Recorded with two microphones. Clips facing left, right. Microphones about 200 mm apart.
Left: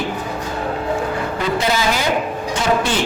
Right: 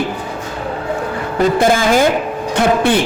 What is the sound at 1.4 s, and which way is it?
Speech, 50° right (ahead or behind).